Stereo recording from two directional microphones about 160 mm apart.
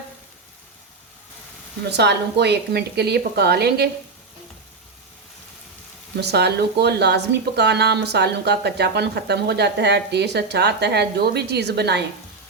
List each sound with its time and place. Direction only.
1.9 s speech: 90° right
6.1 s speech: 90° right